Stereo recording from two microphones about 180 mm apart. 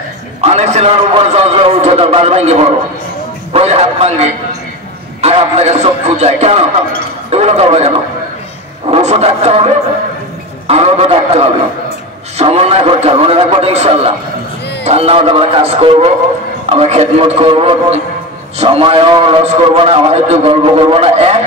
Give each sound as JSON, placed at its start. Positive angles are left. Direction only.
{"t": 0.4, "sound": "a man's voice", "side_deg": -40}
{"t": 5.2, "sound": "a man's voice", "side_deg": -35}
{"t": 8.9, "sound": "a man's voice", "side_deg": -35}
{"t": 10.7, "sound": "a man's voice", "side_deg": -35}